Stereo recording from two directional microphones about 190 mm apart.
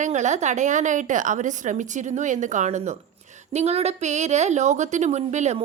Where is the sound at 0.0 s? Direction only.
40° right (ahead or behind).